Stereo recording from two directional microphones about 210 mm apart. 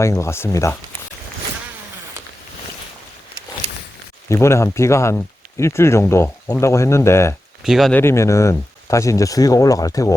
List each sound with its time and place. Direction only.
0.0 s speech: 15° left (ahead or behind)
4.3 s speech: 15° left (ahead or behind)
7.6 s speech: centre (ahead or behind)
8.0 s speech: 15° left (ahead or behind)